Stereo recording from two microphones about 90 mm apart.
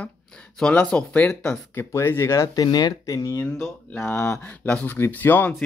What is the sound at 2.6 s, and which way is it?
Speech, 50° left (ahead or behind).